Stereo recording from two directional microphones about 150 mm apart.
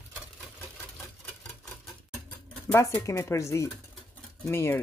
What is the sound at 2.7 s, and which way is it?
Speech, 20° left (ahead or behind).